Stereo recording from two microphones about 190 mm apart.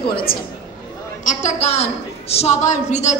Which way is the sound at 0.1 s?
50° left (ahead or behind).